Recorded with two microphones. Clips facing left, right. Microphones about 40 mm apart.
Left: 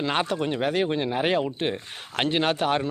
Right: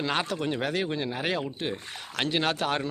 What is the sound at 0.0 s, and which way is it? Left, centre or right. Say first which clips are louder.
Speech: left 3 dB; centre.